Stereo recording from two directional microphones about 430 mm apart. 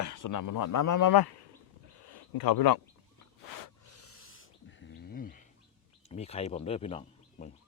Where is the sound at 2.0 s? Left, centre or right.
Left.